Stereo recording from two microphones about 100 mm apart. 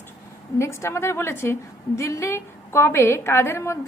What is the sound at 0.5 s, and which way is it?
A woman's voice, 30° left (ahead or behind).